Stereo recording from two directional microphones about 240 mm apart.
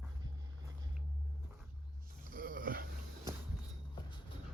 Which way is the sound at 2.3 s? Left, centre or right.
Right.